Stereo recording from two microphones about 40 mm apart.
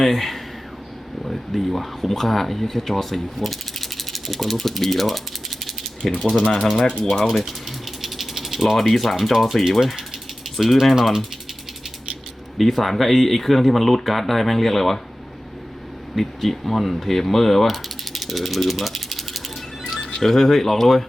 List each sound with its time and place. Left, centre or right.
0.0 s speech: centre
6.1 s speech: left
6.4 s speech: centre
8.0 s rattle: centre
9.3 s speech: centre
12.5 s speech: centre
16.1 s mechanisms: centre
20.1 s speech: centre